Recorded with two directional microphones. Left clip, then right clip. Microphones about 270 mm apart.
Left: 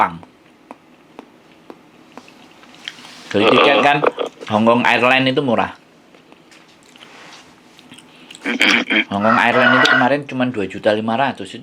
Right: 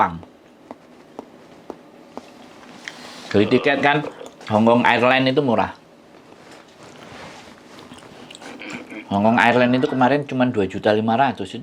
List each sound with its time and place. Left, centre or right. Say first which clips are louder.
3.3 s speech: left 6 dB; centre
8.7 s speech: left 19 dB; left
9.0 s speech: right 4 dB; right